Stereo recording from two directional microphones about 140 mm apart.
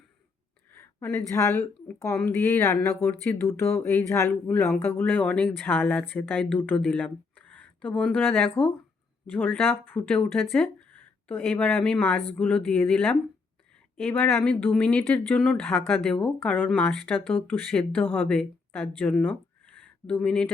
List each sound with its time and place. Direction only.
0.7 s a woman's voice: 15° left (ahead or behind)
14.3 s speech: 5° left (ahead or behind)
20.2 s speech: 10° left (ahead or behind)